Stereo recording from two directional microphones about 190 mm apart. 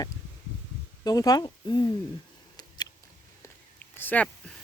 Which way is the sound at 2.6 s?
20° left (ahead or behind).